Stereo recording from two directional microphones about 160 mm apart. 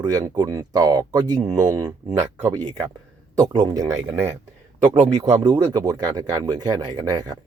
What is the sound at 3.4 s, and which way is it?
Speech, 25° right (ahead or behind).